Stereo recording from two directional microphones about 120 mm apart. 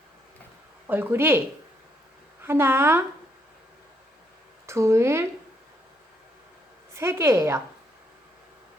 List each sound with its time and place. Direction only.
0.9 s a woman's voice: 15° right (ahead or behind)
2.4 s a woman's voice: 20° right (ahead or behind)
4.6 s speech: 20° right (ahead or behind)
6.9 s a woman's voice: 20° right (ahead or behind)